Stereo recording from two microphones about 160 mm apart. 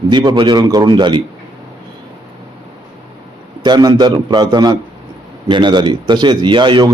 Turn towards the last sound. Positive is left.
turn(degrees=-30)  # may be behind; listen again after turning